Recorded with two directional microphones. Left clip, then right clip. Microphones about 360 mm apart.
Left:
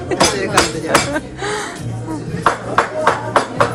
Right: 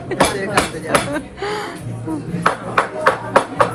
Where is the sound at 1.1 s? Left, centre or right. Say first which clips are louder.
Left 2 dB; centre.